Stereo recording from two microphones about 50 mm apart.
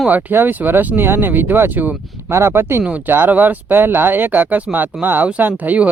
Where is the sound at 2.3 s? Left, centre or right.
Right.